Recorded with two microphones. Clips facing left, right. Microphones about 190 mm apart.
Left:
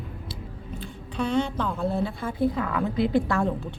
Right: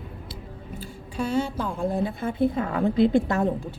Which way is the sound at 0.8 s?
10° right (ahead or behind).